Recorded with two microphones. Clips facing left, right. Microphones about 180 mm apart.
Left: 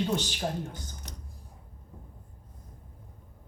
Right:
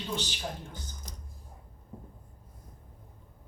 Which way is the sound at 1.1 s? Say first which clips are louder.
Left 2 dB; 70° left (ahead or behind).